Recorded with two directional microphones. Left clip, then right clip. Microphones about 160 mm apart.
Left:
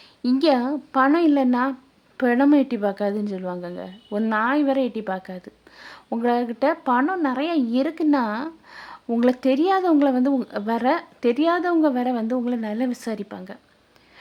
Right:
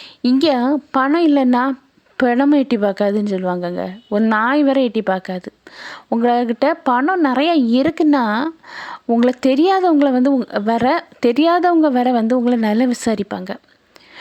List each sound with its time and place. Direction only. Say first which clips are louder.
0.0 s speech: right 5 dB; 35° right (ahead or behind)